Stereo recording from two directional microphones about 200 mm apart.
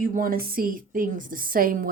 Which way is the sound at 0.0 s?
45° right (ahead or behind).